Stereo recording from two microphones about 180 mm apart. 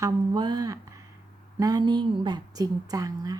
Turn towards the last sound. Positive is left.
turn(degrees=-20)  # may be behind; listen again after turning